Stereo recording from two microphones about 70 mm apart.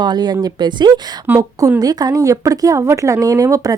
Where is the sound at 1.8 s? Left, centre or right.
Right.